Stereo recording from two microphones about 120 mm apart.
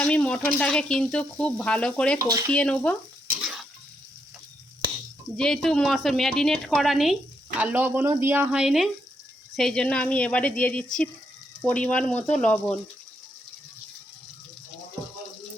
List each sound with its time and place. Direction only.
0.0 s speech: 10° left (ahead or behind)
2.1 s stir: 25° right (ahead or behind)
2.5 s speech: 10° left (ahead or behind)
3.4 s a sound: 5° right (ahead or behind)
5.4 s a woman's voice: 5° left (ahead or behind)